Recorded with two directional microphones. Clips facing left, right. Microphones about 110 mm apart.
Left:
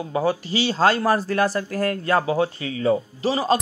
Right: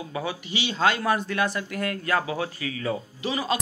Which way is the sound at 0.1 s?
35° left (ahead or behind).